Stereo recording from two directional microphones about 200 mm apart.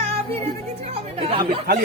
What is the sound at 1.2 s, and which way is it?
Speech, 25° right (ahead or behind).